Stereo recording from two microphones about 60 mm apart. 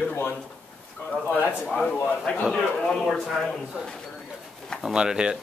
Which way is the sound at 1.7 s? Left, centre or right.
Left.